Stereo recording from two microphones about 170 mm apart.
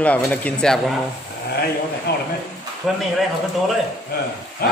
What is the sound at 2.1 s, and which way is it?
Speech, 70° left (ahead or behind).